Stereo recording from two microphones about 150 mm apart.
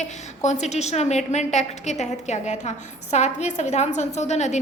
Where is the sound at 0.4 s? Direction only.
50° left (ahead or behind).